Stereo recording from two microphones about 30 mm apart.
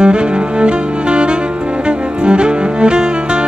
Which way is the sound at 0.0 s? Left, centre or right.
Right.